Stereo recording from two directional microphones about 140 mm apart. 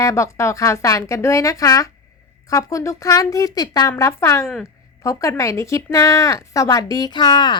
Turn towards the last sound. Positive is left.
turn(degrees=30)  # may be behind; listen again after turning